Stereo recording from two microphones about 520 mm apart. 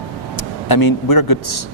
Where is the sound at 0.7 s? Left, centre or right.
Left.